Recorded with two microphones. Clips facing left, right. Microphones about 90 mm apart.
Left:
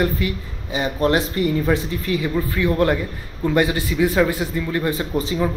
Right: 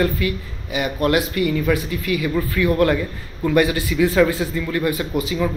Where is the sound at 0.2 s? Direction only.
25° left (ahead or behind).